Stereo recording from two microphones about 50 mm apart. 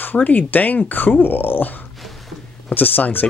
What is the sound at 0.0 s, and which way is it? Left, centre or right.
Speech, left.